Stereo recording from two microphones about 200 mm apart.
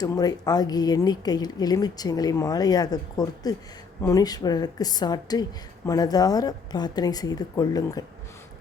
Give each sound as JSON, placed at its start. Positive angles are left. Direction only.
{"t": 0.0, "sound": "speech", "side_deg": 20}